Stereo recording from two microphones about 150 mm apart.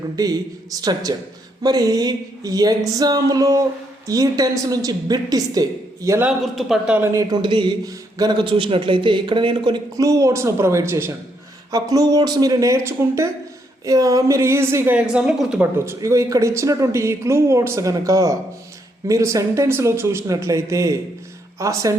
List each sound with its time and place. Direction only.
0.2 s a man's voice: 25° right (ahead or behind)
6.2 s a man's voice: centre (ahead or behind)
15.9 s a man's voice: 20° right (ahead or behind)